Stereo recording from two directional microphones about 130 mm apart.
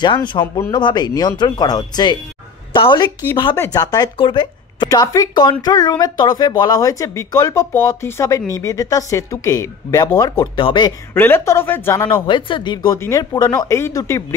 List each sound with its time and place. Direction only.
0.0 s a woman's voice: 35° left (ahead or behind)
3.5 s speech: 25° left (ahead or behind)
4.8 s speech: 25° left (ahead or behind)
10.5 s speech: 40° left (ahead or behind)
11.1 s speech: 20° left (ahead or behind)
12.1 s speech: 40° left (ahead or behind); by 14.2 s 20° left (ahead or behind)